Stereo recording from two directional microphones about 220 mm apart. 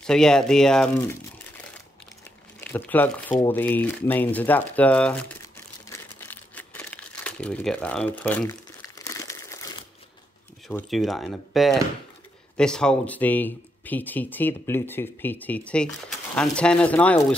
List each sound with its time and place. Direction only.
0.0 s speech: 5° left (ahead or behind)
2.6 s speech: 10° left (ahead or behind)
8.9 s crumpling: 15° left (ahead or behind)
10.7 s speech: 5° left (ahead or behind)